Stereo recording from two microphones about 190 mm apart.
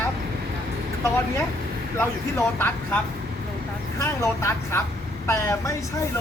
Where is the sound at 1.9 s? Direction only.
10° left (ahead or behind).